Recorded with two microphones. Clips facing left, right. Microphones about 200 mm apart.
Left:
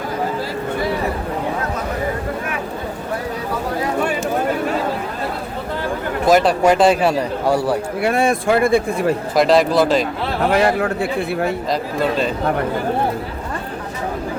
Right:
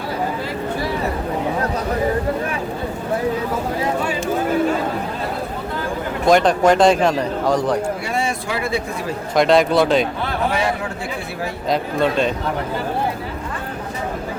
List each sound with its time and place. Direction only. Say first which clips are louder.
6.2 s speech: even; 5° left (ahead or behind)
8.0 s speech: left 7 dB; 55° left (ahead or behind)
9.3 s speech: right 1 dB; centre (ahead or behind)
10.5 s a man's voice: left 6 dB; 60° left (ahead or behind)
11.7 s speech: right 1 dB; centre (ahead or behind)